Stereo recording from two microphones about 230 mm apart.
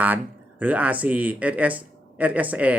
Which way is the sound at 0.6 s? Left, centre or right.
Centre.